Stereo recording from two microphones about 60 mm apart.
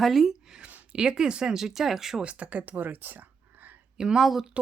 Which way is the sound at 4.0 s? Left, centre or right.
Centre.